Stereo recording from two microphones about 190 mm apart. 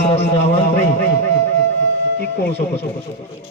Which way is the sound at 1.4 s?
65° left (ahead or behind).